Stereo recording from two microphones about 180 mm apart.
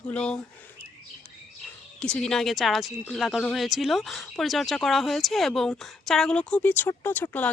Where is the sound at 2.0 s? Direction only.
5° left (ahead or behind).